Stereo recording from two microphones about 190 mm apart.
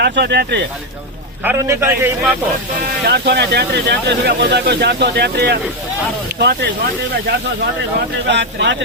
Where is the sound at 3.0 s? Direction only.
60° right (ahead or behind).